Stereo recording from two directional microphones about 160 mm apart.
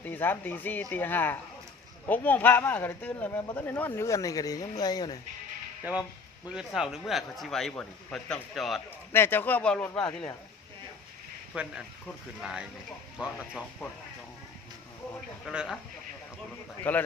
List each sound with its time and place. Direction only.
0.0 s speech: 10° left (ahead or behind)
5.9 s a man's voice: 10° right (ahead or behind)
9.1 s speech: 15° left (ahead or behind)
11.5 s a man's voice: 5° right (ahead or behind)
15.4 s a man's voice: centre (ahead or behind)
16.9 s speech: 10° left (ahead or behind)